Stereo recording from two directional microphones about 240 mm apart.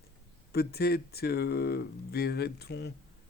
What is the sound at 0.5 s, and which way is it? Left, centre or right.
Speech, left.